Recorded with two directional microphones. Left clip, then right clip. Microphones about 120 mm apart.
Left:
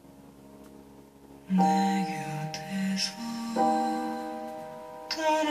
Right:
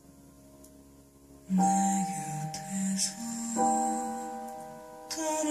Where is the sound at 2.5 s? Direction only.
50° right (ahead or behind).